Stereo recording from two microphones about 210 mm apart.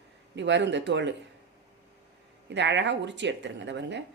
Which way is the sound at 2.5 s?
55° right (ahead or behind).